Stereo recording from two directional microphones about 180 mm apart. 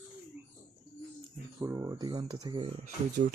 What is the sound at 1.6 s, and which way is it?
Speech, 20° right (ahead or behind).